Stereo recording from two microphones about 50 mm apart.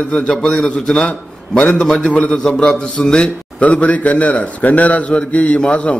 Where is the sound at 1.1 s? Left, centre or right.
Left.